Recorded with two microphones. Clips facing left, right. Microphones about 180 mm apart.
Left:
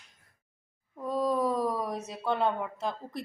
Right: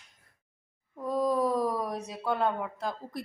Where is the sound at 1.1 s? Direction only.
10° right (ahead or behind).